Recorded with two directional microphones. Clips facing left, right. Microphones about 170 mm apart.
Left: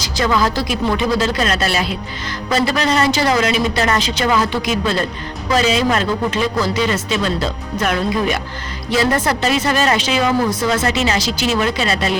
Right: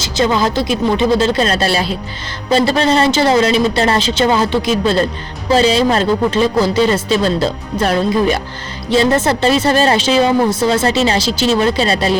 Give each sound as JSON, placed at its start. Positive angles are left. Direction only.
{"t": 0.0, "sound": "speech", "side_deg": -25}